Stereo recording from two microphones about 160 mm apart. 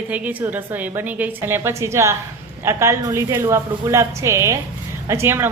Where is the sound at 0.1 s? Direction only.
10° right (ahead or behind).